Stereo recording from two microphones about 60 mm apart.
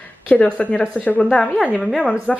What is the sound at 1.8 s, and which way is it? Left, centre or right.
Speech, centre.